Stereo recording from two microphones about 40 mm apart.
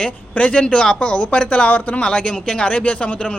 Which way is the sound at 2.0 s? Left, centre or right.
Left.